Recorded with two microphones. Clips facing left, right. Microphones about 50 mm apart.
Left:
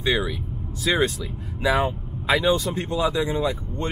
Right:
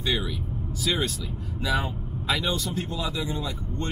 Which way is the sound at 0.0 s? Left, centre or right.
Centre.